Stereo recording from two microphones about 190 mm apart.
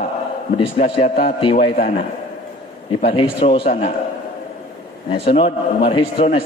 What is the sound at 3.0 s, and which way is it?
Speech, 30° left (ahead or behind).